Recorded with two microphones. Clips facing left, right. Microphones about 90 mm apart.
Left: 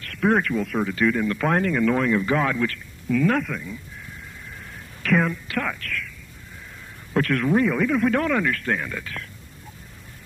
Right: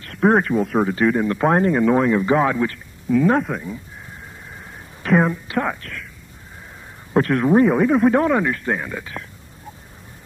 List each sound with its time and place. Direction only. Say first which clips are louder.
0.0 s a man's voice: right 4 dB; 30° right (ahead or behind)
5.1 s a man's voice: right 4 dB; 25° right (ahead or behind)
7.4 s a man's voice: right 7 dB; 30° right (ahead or behind)